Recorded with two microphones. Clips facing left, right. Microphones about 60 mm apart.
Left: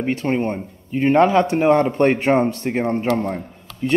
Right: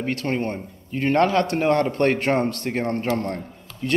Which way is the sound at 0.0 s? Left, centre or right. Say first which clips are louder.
Left 4 dB; centre.